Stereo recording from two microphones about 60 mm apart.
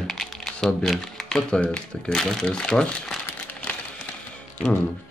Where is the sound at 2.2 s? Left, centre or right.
Centre.